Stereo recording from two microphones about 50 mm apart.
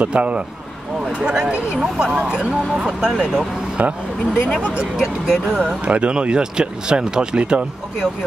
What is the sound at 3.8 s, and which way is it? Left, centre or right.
Speech, right.